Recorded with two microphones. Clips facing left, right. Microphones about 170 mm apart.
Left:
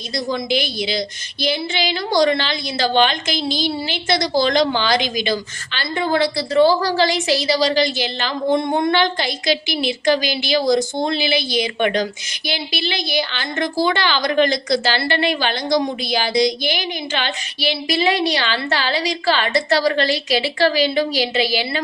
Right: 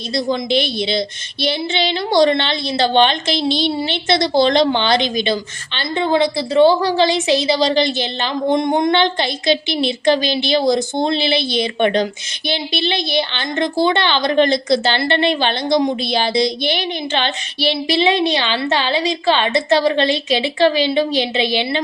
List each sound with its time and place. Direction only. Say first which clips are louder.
0.1 s a woman's voice: right 3 dB; 25° right (ahead or behind)